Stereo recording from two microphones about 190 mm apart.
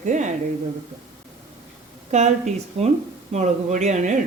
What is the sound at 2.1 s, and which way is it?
Speech, 35° right (ahead or behind).